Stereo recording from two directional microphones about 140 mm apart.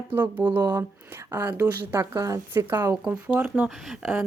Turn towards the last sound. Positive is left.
turn(degrees=-5)  # may be behind; listen again after turning